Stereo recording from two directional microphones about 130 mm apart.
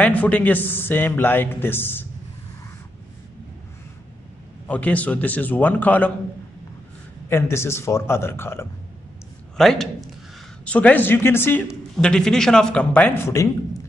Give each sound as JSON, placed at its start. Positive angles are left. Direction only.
{"t": 0.0, "sound": "speech", "side_deg": 10}
{"t": 4.6, "sound": "speech", "side_deg": 10}
{"t": 7.2, "sound": "speech", "side_deg": 20}
{"t": 9.6, "sound": "speech", "side_deg": 0}
{"t": 12.0, "sound": "speech", "side_deg": 5}